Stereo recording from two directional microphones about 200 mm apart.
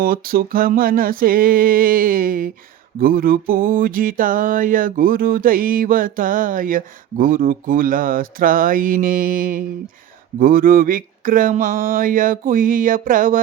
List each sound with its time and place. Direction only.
0.0 s music: 45° right (ahead or behind)